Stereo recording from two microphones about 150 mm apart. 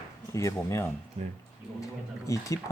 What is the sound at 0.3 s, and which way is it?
Speech, 20° left (ahead or behind).